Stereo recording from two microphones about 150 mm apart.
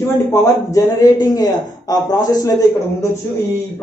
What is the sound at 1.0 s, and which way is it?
A man's voice, 25° left (ahead or behind).